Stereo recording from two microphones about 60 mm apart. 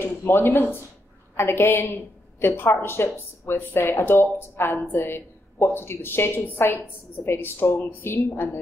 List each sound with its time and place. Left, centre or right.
0.0 s a woman's voice: left